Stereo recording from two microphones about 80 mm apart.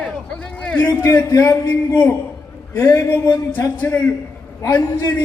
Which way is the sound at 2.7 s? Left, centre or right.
Left.